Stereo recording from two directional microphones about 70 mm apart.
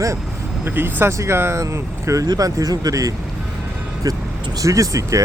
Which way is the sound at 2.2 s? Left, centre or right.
Right.